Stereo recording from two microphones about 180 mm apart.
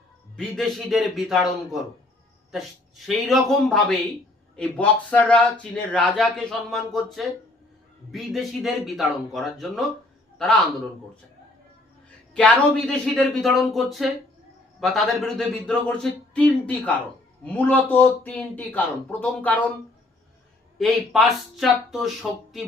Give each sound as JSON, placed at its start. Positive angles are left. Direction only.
{"t": 0.3, "sound": "speech", "side_deg": 0}
{"t": 3.1, "sound": "a man's voice", "side_deg": 0}
{"t": 12.3, "sound": "a man's voice", "side_deg": 5}
{"t": 20.7, "sound": "speech", "side_deg": 0}